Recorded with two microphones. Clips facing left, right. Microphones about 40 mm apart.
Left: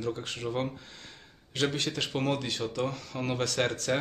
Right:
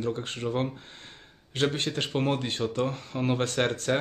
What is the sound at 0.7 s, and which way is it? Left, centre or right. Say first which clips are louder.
Gasp: right 1 dB; right.